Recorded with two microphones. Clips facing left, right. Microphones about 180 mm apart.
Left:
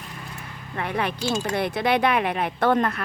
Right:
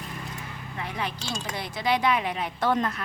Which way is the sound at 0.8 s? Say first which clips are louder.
Left 7 dB; 60° left (ahead or behind).